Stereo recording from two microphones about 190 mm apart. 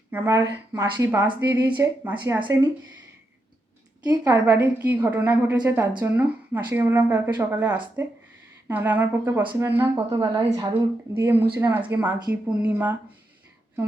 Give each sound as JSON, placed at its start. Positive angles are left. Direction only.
{"t": 0.1, "sound": "a woman's voice", "side_deg": -15}
{"t": 4.1, "sound": "speech", "side_deg": -15}
{"t": 9.4, "sound": "a woman's voice", "side_deg": -25}